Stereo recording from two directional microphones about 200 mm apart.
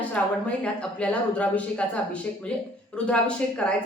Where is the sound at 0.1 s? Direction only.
5° left (ahead or behind).